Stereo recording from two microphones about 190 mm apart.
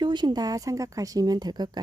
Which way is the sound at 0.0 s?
25° right (ahead or behind).